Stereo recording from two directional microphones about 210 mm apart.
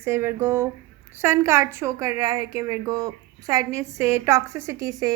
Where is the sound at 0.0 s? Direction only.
10° right (ahead or behind).